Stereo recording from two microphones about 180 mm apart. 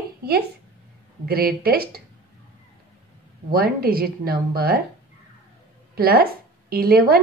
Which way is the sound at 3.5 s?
55° right (ahead or behind).